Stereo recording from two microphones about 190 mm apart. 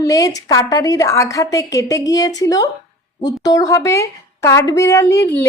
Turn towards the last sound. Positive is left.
turn(degrees=15)  # may be behind; listen again after turning